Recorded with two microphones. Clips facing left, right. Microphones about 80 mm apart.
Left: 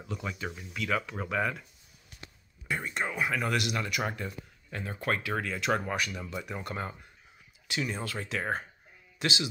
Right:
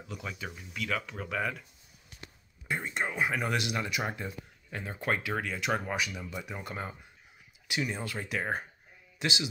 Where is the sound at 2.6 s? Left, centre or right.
Right.